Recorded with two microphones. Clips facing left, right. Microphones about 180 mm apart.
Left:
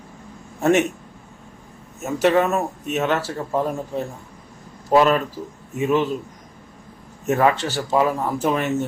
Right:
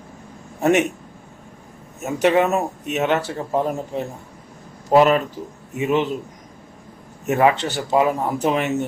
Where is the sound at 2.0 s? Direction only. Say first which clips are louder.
Right 1 dB; 15° right (ahead or behind).